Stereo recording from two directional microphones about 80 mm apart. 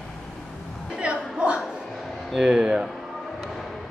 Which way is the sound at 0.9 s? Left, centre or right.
Centre.